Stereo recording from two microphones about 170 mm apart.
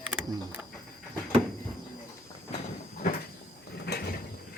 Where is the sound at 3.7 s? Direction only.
65° left (ahead or behind).